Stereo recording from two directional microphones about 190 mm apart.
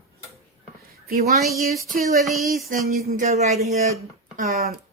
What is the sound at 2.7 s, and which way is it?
Speech, 50° right (ahead or behind).